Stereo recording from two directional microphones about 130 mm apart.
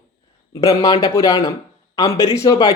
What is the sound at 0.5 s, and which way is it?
A man's voice, 25° left (ahead or behind).